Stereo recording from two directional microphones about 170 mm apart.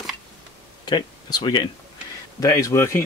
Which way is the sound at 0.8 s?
25° left (ahead or behind).